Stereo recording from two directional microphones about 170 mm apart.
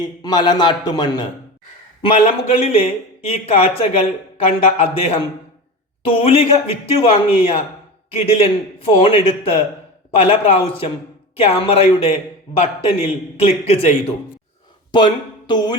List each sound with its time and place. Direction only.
0.0 s a man's voice: 25° left (ahead or behind)
14.9 s speech: 25° left (ahead or behind)